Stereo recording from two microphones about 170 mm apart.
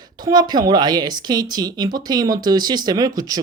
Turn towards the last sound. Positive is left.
turn(degrees=-20)  # may be behind; listen again after turning